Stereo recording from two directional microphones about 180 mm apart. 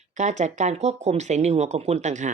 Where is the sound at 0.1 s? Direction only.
40° right (ahead or behind).